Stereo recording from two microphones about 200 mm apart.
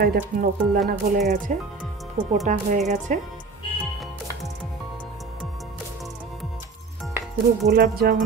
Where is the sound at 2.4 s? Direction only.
40° right (ahead or behind).